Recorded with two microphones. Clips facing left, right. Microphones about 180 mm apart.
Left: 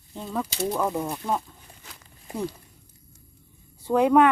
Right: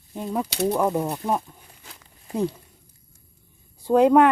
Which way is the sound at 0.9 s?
30° right (ahead or behind).